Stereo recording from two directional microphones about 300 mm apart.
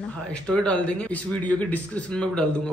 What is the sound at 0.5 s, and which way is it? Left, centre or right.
A man's voice, centre.